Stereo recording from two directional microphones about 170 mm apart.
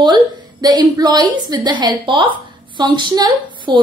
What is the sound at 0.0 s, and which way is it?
A woman's voice, 25° right (ahead or behind).